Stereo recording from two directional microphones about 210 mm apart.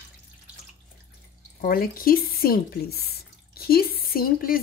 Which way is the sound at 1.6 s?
45° left (ahead or behind).